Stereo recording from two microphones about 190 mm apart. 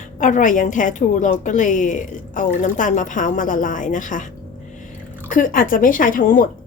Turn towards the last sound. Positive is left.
turn(degrees=45)  # may be behind; listen again after turning